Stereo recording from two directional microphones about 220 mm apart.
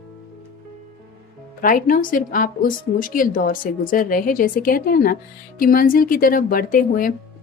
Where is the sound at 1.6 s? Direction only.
40° left (ahead or behind).